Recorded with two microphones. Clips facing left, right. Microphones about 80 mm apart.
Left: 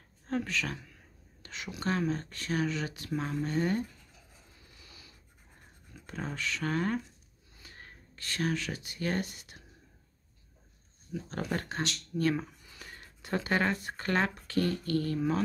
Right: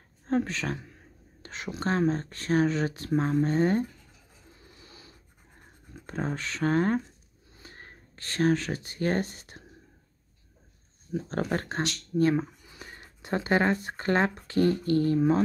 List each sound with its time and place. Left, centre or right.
0.3 s speech: right
4.7 s a sound: right
5.9 s speech: right
11.1 s speech: right
12.2 s speech: right